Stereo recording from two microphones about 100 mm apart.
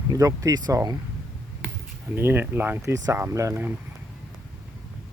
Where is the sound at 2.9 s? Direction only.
35° right (ahead or behind).